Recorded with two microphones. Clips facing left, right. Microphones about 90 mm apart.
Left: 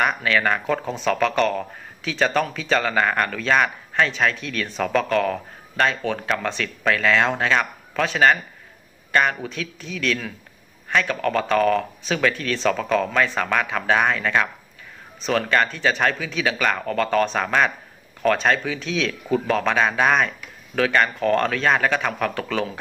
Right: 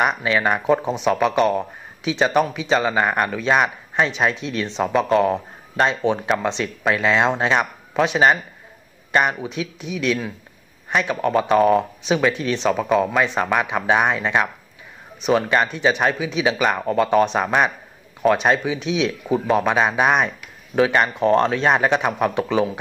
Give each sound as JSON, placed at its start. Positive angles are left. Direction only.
{"t": 0.0, "sound": "speech", "side_deg": -20}